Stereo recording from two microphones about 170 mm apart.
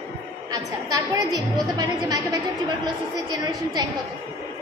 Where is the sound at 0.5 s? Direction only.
20° right (ahead or behind).